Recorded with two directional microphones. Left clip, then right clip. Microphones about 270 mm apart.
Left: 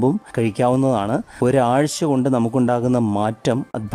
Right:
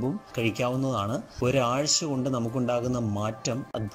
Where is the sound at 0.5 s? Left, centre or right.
Left.